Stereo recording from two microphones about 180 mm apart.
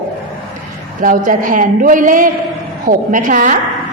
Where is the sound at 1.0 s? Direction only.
50° right (ahead or behind).